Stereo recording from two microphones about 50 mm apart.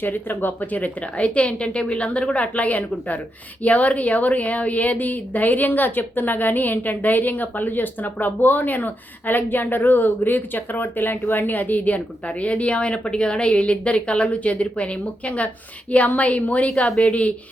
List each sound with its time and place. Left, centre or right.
0.0 s a woman's voice: left